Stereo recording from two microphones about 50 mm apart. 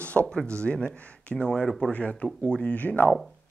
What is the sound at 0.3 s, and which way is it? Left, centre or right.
Speech, centre.